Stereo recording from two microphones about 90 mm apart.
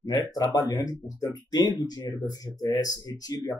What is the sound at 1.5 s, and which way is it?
Speech, 55° left (ahead or behind).